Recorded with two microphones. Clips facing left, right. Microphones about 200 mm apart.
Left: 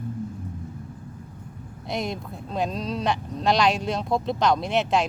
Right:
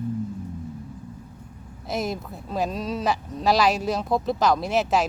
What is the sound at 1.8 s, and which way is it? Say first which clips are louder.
Speech: right 1 dB; 5° right (ahead or behind).